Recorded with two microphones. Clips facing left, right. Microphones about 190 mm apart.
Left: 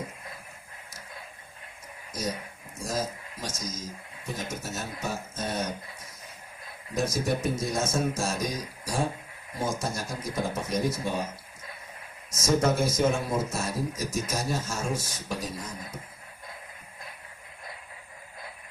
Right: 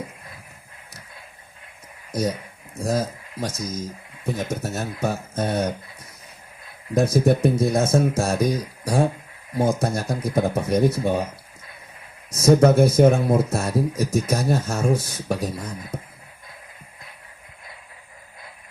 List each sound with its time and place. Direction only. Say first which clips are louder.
2.7 s speech: right 7 dB; 60° right (ahead or behind)
6.9 s speech: right 9 dB; 60° right (ahead or behind)
12.3 s speech: right 9 dB; 60° right (ahead or behind)